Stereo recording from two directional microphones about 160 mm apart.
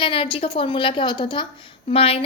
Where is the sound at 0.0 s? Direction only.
35° left (ahead or behind).